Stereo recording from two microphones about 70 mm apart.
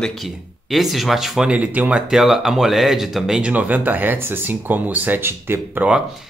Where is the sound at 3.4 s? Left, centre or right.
Right.